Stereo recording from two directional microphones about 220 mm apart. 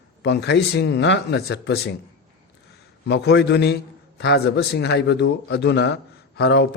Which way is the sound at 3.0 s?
50° left (ahead or behind).